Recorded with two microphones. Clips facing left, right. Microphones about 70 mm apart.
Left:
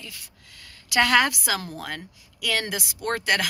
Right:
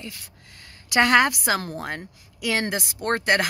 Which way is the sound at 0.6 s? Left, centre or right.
Right.